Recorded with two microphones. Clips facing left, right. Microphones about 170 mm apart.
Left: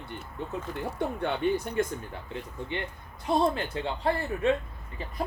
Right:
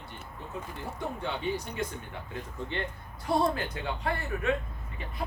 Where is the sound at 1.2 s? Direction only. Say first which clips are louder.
Left 6 dB; 55° left (ahead or behind).